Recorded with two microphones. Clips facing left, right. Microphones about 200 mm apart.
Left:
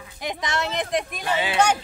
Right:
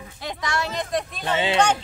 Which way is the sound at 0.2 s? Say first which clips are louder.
Left 1 dB; 20° left (ahead or behind).